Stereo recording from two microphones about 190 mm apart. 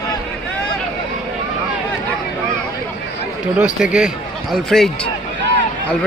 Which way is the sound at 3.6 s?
5° right (ahead or behind).